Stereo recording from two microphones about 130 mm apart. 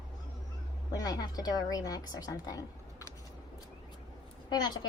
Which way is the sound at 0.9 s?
30° left (ahead or behind).